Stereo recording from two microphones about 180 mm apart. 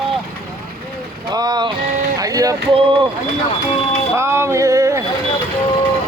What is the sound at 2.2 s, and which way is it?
Speech, 20° right (ahead or behind).